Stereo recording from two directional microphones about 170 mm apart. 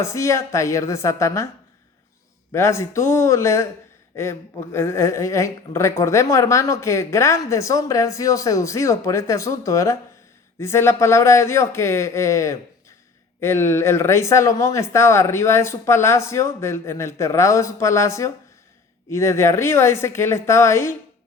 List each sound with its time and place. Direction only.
0.0 s speech: 15° left (ahead or behind)
2.5 s speech: 15° left (ahead or behind)